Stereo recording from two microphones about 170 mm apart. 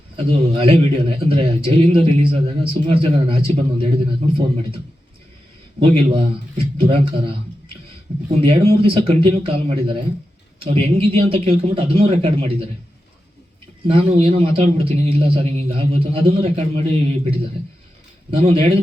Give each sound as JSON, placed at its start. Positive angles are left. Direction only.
{"t": 0.2, "sound": "a man's voice", "side_deg": -35}
{"t": 5.8, "sound": "a man's voice", "side_deg": -30}
{"t": 8.4, "sound": "a man's voice", "side_deg": -35}
{"t": 13.8, "sound": "a man's voice", "side_deg": -35}
{"t": 18.3, "sound": "a man's voice", "side_deg": -35}